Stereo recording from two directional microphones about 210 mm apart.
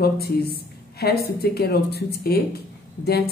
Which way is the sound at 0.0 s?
50° left (ahead or behind).